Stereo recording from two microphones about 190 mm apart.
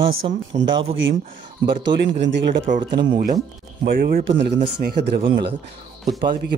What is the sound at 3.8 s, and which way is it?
Speech, 50° right (ahead or behind).